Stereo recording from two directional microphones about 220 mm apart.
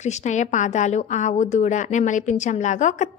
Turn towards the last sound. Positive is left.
turn(degrees=35)  # may be behind; listen again after turning